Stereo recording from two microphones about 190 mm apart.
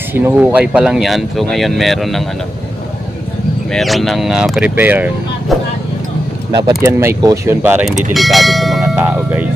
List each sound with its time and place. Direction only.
0.1 s speech: 10° right (ahead or behind)
3.7 s speech: centre (ahead or behind)
6.5 s speech: 20° right (ahead or behind)
8.1 s speech: centre (ahead or behind)
9.0 s speech: 10° right (ahead or behind)